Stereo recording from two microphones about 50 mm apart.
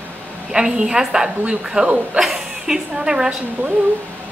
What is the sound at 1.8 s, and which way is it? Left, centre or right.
Speech, right.